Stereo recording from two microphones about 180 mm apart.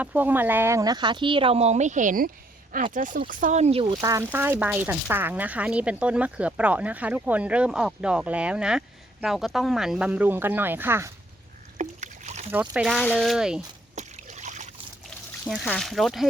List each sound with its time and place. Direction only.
0.0 s speech: 10° right (ahead or behind); by 3.9 s 30° right (ahead or behind)
4.0 s speech: 15° right (ahead or behind)
11.8 s rowboat: 40° right (ahead or behind)
12.5 s speech: 10° right (ahead or behind)
13.9 s a sound: 40° right (ahead or behind)
15.0 s speech: centre (ahead or behind)